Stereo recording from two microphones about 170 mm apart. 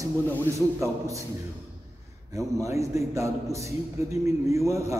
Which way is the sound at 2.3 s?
20° right (ahead or behind).